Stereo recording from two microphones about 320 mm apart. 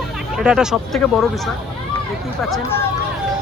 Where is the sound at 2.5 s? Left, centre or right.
Centre.